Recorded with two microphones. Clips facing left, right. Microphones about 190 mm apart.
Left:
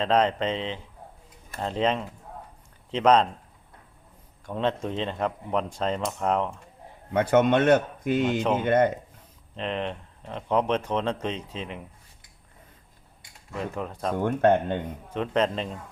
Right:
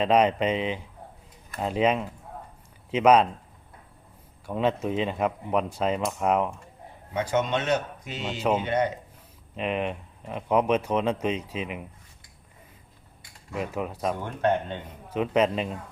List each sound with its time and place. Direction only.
0.0 s speech: 10° right (ahead or behind)
4.4 s speech: 10° right (ahead or behind)
7.1 s speech: 55° left (ahead or behind)
9.6 s speech: 10° right (ahead or behind)
13.5 s speech: 10° right (ahead or behind)
14.3 s speech: 50° left (ahead or behind)
15.1 s speech: 10° right (ahead or behind)